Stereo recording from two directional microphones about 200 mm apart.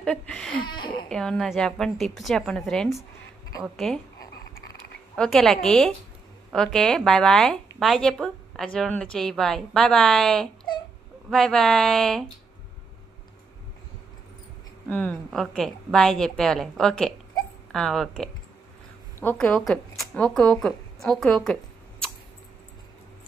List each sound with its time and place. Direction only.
0.0 s a woman's voice: 5° left (ahead or behind)
0.7 s speech: 20° left (ahead or behind)
1.0 s a woman's voice: 5° left (ahead or behind)
5.1 s a woman's voice: 5° left (ahead or behind)
14.9 s a woman's voice: 10° left (ahead or behind)